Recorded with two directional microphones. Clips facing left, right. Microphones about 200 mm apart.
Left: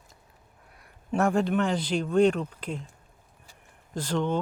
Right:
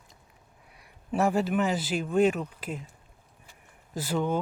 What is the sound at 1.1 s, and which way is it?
Speech, 5° right (ahead or behind).